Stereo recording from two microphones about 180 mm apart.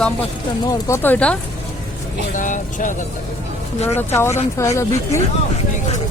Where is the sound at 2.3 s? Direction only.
45° left (ahead or behind).